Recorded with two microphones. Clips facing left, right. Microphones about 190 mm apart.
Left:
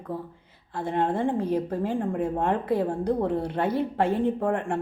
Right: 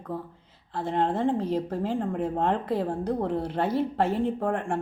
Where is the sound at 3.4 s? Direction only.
55° left (ahead or behind).